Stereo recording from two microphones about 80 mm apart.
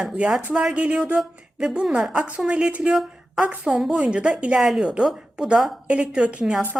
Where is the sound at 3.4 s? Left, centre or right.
Centre.